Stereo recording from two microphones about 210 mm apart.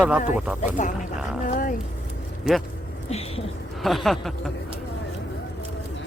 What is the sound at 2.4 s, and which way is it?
Speech, centre (ahead or behind).